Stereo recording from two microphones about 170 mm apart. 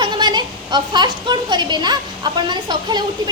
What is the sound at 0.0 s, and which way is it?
A woman's voice, 25° right (ahead or behind).